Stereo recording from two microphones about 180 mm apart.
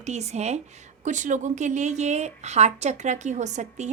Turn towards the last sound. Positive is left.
turn(degrees=-40)  # may be behind; listen again after turning